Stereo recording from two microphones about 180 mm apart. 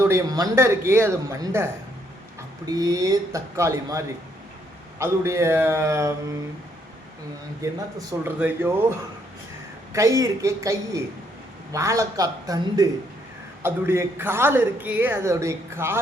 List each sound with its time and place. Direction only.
0.1 s a man's voice: 20° right (ahead or behind)
7.6 s a man's voice: 15° right (ahead or behind)